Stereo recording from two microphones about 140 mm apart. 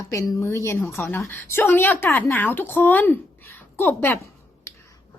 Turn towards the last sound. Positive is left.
turn(degrees=15)  # may be behind; listen again after turning